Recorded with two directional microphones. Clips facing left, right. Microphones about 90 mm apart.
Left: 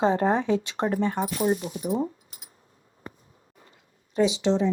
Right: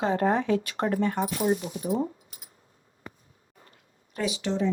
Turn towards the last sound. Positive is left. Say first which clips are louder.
# left 5 dB
turn(degrees=20)  # may be behind; listen again after turning